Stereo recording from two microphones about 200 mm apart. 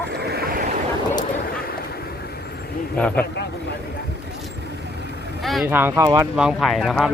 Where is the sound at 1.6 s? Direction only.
50° left (ahead or behind).